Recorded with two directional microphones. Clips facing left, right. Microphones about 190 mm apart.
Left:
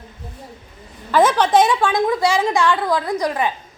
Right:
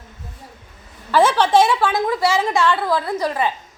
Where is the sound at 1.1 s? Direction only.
10° right (ahead or behind).